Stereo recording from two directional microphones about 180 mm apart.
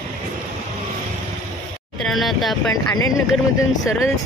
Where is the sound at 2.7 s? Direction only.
20° left (ahead or behind).